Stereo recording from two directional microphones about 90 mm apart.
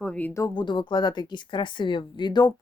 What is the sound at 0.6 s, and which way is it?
A woman's voice, 60° left (ahead or behind).